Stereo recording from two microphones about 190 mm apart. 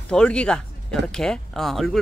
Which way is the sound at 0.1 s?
5° left (ahead or behind).